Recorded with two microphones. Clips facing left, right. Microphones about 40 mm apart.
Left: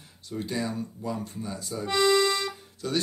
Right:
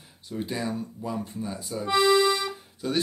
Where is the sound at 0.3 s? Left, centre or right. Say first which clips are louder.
Right 1 dB; centre.